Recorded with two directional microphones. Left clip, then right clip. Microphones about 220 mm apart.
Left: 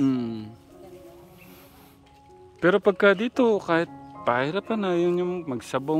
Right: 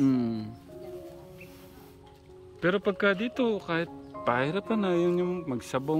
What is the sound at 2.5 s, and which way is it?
Speech, 25° left (ahead or behind).